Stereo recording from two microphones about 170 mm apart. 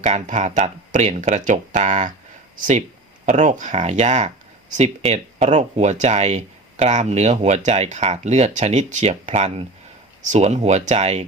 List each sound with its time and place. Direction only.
0.0 s speech: 45° right (ahead or behind)